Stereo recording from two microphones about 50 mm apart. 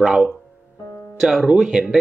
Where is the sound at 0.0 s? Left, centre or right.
Centre.